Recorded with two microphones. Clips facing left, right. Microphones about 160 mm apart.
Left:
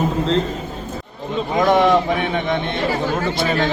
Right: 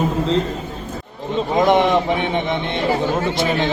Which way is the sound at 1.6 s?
20° right (ahead or behind).